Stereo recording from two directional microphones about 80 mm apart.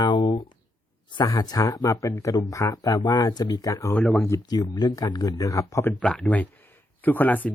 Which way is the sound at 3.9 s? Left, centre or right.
Centre.